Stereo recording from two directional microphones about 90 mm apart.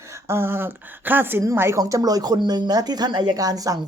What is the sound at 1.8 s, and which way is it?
Speech, 40° right (ahead or behind).